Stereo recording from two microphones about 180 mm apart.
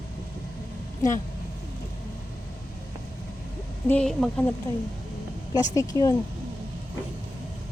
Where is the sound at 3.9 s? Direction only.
5° left (ahead or behind).